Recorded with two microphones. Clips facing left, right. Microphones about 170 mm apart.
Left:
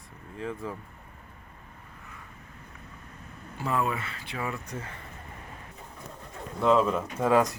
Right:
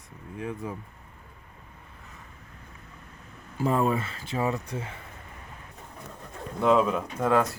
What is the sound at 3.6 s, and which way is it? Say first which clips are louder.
Speech: right 5 dB; 35° right (ahead or behind).